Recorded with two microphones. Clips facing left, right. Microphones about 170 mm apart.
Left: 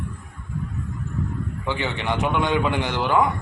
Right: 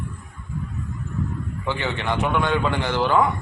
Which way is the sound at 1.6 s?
15° left (ahead or behind).